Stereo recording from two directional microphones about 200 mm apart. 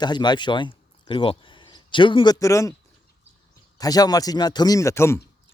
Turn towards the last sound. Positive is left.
turn(degrees=15)  # may be behind; listen again after turning